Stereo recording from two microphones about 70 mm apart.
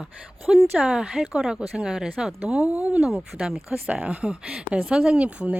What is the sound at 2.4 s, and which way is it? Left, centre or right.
Speech, centre.